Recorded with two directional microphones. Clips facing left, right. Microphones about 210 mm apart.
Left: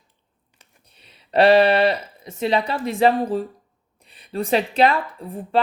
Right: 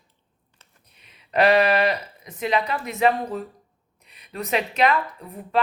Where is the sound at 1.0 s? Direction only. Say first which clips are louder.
Left 4 dB; 30° left (ahead or behind).